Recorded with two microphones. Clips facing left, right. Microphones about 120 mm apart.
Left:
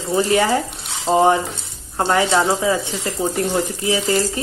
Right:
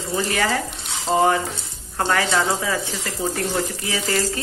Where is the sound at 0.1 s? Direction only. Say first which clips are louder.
Left 6 dB; 25° left (ahead or behind).